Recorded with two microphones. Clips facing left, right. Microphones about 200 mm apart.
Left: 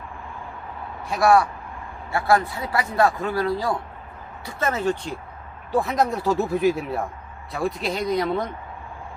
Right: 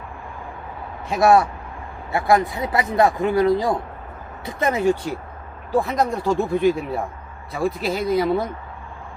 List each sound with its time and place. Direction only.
1.1 s speech: 20° right (ahead or behind); by 8.4 s 5° right (ahead or behind)